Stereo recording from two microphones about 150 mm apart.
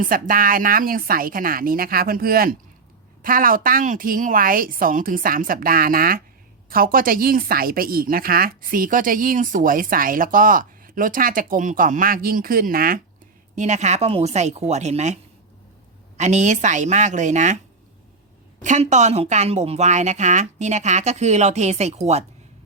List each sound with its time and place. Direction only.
0.0 s a woman's voice: 70° right (ahead or behind)
3.2 s a woman's voice: 70° right (ahead or behind)
13.6 s speech: 50° right (ahead or behind)
18.6 s speech: 55° right (ahead or behind)